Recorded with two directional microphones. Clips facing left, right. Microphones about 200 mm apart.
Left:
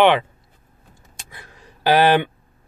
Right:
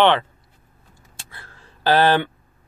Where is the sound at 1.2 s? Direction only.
15° left (ahead or behind).